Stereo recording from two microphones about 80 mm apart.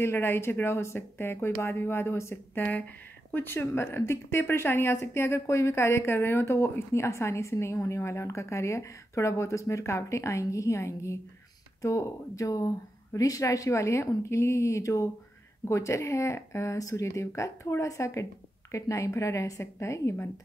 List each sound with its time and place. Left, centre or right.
0.0 s speech: left